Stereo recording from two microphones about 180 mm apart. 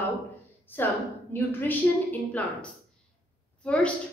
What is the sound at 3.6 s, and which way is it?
Speech, 5° left (ahead or behind).